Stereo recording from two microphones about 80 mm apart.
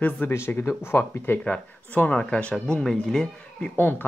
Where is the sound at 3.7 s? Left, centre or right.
Left.